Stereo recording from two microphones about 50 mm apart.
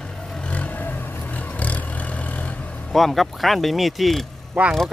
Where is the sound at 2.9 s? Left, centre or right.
Centre.